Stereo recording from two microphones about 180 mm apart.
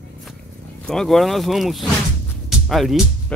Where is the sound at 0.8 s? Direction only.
Centre (ahead or behind).